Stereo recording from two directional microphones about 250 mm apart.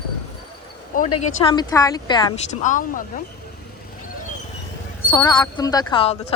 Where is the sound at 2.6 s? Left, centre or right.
Left.